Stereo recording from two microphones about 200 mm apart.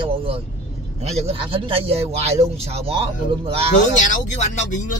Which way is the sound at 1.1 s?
30° right (ahead or behind).